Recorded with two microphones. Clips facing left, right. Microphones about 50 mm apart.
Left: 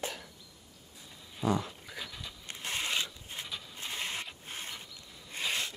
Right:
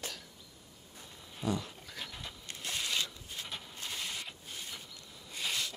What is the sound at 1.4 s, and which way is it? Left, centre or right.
Dog, left.